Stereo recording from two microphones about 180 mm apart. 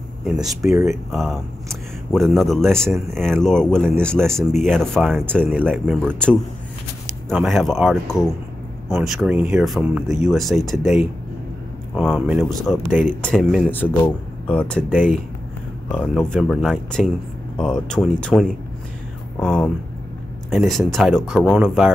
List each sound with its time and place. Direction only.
0.2 s speech: centre (ahead or behind)